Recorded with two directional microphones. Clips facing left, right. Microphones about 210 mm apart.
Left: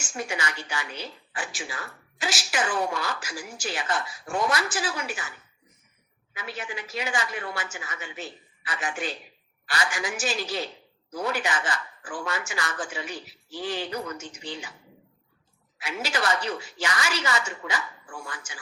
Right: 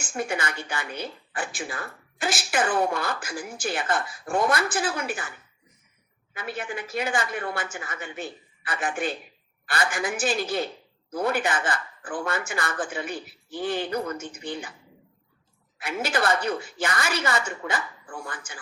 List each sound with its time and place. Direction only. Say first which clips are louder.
0.0 s a woman's voice: right 3 dB; 55° right (ahead or behind)
6.3 s a woman's voice: right 3 dB; 55° right (ahead or behind)
15.8 s a woman's voice: right 3 dB; 55° right (ahead or behind)